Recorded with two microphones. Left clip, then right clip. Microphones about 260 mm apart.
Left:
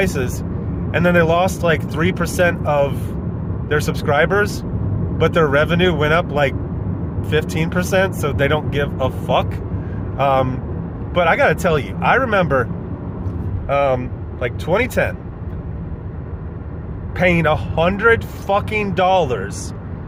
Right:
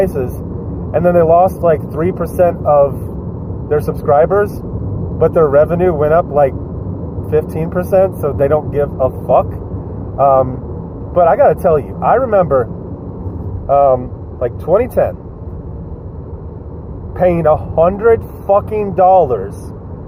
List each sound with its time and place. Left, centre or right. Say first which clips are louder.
0.9 s speech: right 5 dB; left
13.7 s speech: right 7 dB; left
17.2 s speech: right 5 dB; left